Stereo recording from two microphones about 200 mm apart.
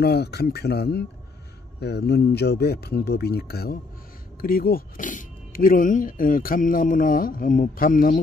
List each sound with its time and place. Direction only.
0.0 s speech: 55° left (ahead or behind)